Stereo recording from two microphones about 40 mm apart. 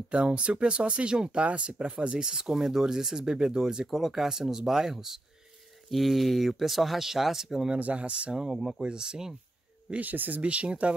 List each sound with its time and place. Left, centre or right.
0.1 s speech: right
1.7 s speech: right
3.9 s speech: centre
7.8 s speech: right
8.4 s speech: centre
9.9 s speech: right
10.4 s speech: right